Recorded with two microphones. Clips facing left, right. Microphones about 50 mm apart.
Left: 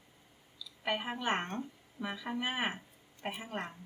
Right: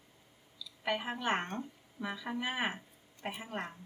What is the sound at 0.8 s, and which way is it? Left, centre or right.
Speech, centre.